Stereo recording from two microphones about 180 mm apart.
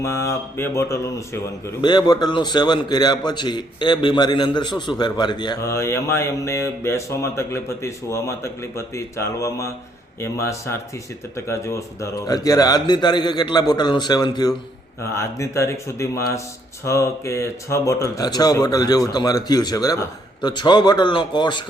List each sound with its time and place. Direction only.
0.0 s mantra: 15° left (ahead or behind)
1.8 s a man's voice: 25° left (ahead or behind)
8.7 s mantra: 15° left (ahead or behind)
11.3 s a man's voice: 15° left (ahead or behind)
15.1 s mantra: 15° left (ahead or behind)
16.8 s a man's voice: 15° left (ahead or behind)